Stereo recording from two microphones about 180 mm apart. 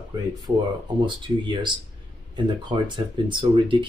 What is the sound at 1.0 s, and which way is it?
Speech, 25° right (ahead or behind).